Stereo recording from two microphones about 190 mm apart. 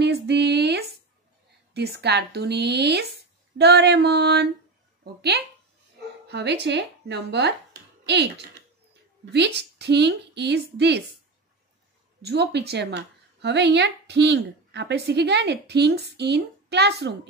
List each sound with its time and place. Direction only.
0.0 s a sound: 60° right (ahead or behind)
1.7 s a woman's voice: 60° right (ahead or behind)
8.0 s typing: 65° right (ahead or behind)
9.3 s a woman's voice: 60° right (ahead or behind)
12.2 s a woman's voice: 60° right (ahead or behind)